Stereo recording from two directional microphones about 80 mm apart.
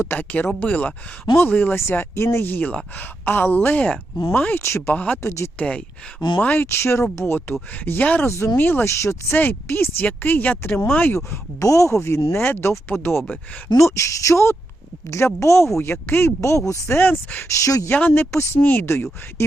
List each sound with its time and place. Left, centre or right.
0.1 s a woman's voice: left
1.8 s a woman's voice: left
4.9 s a woman's voice: centre
6.7 s speech: left
7.2 s a woman's voice: centre; by 9.3 s left
9.3 s a woman's voice: left
11.2 s speech: left
13.7 s a woman's voice: left
17.5 s speech: left
17.8 s a woman's voice: left